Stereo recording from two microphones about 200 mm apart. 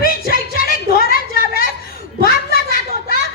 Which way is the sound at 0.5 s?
50° left (ahead or behind).